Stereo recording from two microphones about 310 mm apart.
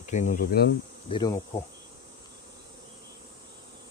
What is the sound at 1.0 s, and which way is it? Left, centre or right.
Insect, centre.